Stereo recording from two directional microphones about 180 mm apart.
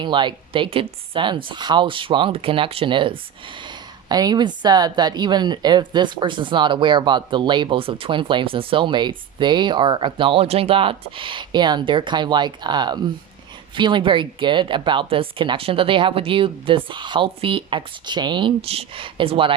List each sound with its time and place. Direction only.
0.0 s a woman's voice: 25° right (ahead or behind)